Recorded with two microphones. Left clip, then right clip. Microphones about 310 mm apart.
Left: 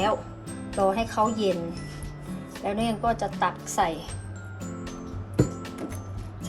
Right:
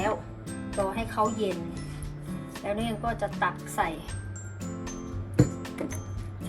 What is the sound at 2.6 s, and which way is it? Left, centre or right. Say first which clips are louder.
A woman's voice: left 5 dB; centre.